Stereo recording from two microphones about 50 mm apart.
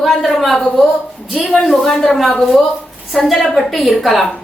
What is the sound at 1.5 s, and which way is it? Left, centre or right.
A woman's voice, centre.